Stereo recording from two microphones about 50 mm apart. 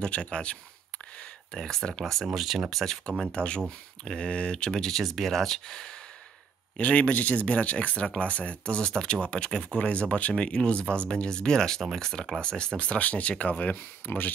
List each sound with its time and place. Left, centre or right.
0.0 s a sound: centre
1.5 s speech: centre
2.2 s speech: centre
2.8 s speech: centre
6.8 s speech: left